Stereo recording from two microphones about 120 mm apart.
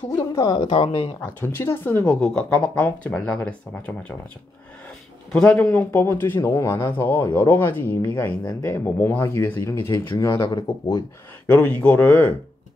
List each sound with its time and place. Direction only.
0.3 s speech: 30° left (ahead or behind)
0.7 s speech: 50° left (ahead or behind)
1.2 s speech: 20° left (ahead or behind)
5.3 s speech: 10° left (ahead or behind); by 10.5 s 25° left (ahead or behind)
11.5 s speech: 10° left (ahead or behind)